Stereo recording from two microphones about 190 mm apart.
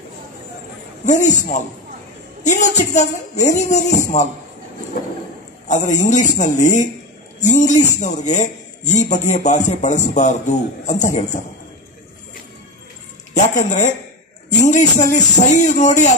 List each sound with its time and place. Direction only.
1.0 s speech: 40° left (ahead or behind)
5.7 s speech: 40° left (ahead or behind)
13.3 s speech: 40° left (ahead or behind)
15.0 s speech: 40° left (ahead or behind)